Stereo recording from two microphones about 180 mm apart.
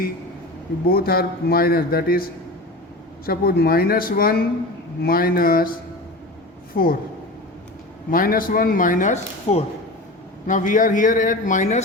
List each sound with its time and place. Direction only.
0.9 s a man's voice: 55° left (ahead or behind)
3.2 s a man's voice: 60° left (ahead or behind)
6.8 s speech: 55° left (ahead or behind)
8.1 s speech: 50° left (ahead or behind)